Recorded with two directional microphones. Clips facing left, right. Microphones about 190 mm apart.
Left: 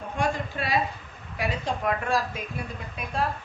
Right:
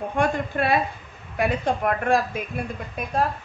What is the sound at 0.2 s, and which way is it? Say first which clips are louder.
A woman's voice: right 5 dB; 55° right (ahead or behind).